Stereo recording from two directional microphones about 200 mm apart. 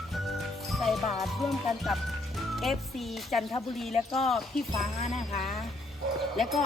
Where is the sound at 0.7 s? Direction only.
Centre (ahead or behind).